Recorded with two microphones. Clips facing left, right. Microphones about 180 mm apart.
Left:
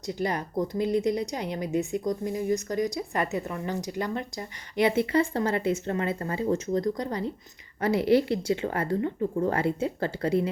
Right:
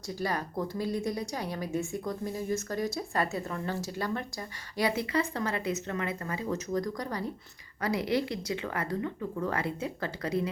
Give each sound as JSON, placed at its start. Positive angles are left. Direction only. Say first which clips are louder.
{"t": 0.2, "sound": "speech", "louder": "left 4 dB", "side_deg": 20}